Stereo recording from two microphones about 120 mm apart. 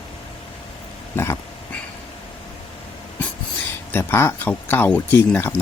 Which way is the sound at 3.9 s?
20° left (ahead or behind).